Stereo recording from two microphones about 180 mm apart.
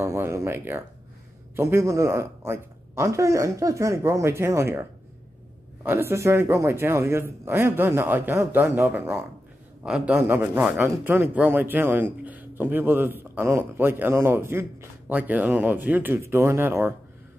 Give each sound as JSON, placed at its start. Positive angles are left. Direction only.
{"t": 0.0, "sound": "a man's voice", "side_deg": -15}
{"t": 5.9, "sound": "a man's voice", "side_deg": -15}